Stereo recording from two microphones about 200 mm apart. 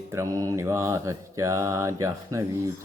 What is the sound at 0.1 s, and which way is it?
Speech, 15° right (ahead or behind).